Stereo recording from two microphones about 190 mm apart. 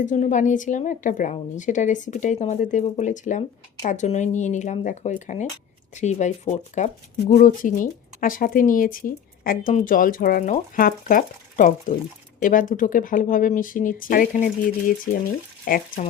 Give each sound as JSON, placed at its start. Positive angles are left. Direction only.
{"t": 0.0, "sound": "a woman's voice", "side_deg": 40}